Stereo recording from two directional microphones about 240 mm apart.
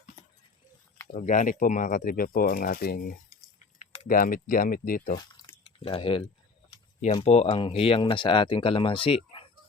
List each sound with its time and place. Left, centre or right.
1.1 s speech: left
5.3 s drip: centre
6.7 s speech: left